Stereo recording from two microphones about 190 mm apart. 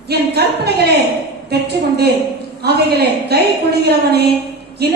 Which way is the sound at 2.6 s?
55° right (ahead or behind).